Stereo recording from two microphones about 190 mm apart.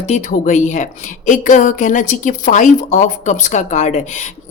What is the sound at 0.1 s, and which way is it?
A woman's voice, 40° left (ahead or behind).